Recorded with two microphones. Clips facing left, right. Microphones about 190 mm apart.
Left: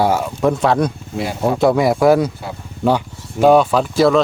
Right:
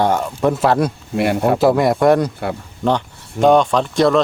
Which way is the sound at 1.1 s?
65° right (ahead or behind).